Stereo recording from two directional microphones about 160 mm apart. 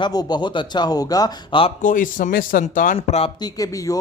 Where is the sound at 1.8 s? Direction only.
55° left (ahead or behind).